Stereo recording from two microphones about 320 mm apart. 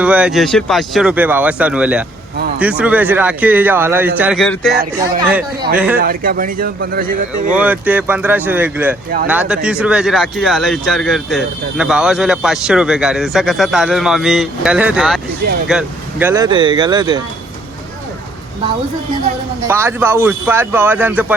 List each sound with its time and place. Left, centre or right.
0.0 s speech: centre
6.0 s speech: right
7.5 s speech: centre
19.6 s speech: centre